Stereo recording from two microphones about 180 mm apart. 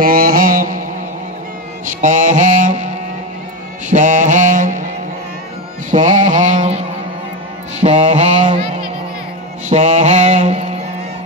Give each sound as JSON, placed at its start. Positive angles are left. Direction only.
{"t": 0.0, "sound": "mantra", "side_deg": -55}
{"t": 1.9, "sound": "mantra", "side_deg": -45}
{"t": 3.9, "sound": "music", "side_deg": -45}
{"t": 5.9, "sound": "mantra", "side_deg": -45}
{"t": 7.8, "sound": "mantra", "side_deg": -40}
{"t": 8.4, "sound": "a sound", "side_deg": -40}
{"t": 9.7, "sound": "mantra", "side_deg": -40}